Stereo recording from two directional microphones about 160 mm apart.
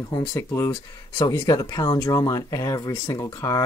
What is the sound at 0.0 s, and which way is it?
Speech, 20° left (ahead or behind).